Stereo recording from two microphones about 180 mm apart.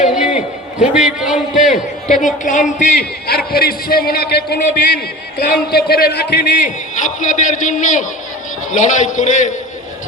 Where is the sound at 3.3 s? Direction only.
60° left (ahead or behind).